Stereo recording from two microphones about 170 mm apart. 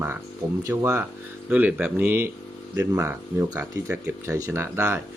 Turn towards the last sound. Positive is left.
turn(degrees=-15)  # may be behind; listen again after turning